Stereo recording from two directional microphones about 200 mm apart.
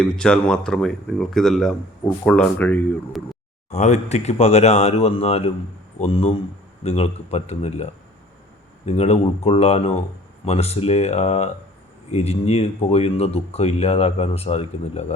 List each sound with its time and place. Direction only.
0.0 s speech: 5° left (ahead or behind)
3.7 s speech: 35° left (ahead or behind)
8.9 s speech: 30° left (ahead or behind)